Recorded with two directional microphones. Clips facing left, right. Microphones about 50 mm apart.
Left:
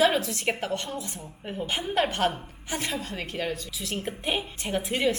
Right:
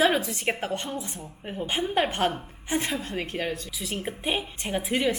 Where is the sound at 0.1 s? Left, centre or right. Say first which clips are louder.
Right 1 dB; centre.